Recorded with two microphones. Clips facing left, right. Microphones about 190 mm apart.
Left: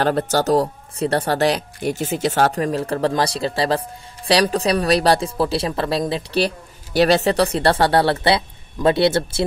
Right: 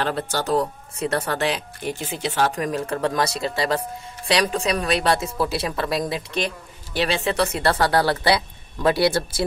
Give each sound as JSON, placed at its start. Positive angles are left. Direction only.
{"t": 0.0, "sound": "speech", "side_deg": 40}
{"t": 2.6, "sound": "speech", "side_deg": 35}